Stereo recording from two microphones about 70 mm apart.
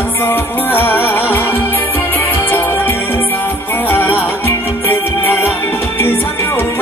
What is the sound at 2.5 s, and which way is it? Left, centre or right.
Music, left.